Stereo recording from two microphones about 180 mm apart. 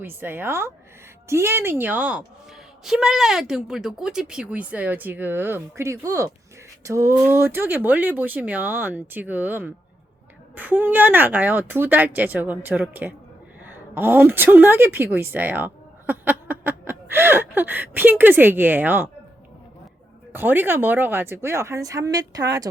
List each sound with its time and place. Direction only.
0.0 s a woman's voice: 10° right (ahead or behind)
20.3 s speech: 10° right (ahead or behind)